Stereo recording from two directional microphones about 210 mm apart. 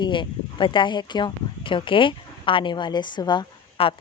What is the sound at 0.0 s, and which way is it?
Speech, 20° left (ahead or behind).